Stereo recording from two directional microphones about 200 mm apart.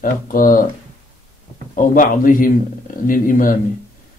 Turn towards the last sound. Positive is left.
turn(degrees=40)  # may be behind; listen again after turning